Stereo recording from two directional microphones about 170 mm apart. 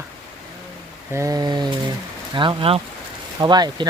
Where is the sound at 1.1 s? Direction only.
20° right (ahead or behind).